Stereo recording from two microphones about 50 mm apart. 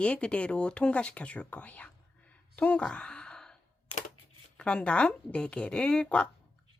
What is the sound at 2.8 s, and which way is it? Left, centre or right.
Sigh, centre.